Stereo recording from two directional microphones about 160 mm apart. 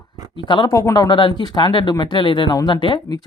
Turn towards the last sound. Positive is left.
turn(degrees=30)  # may be behind; listen again after turning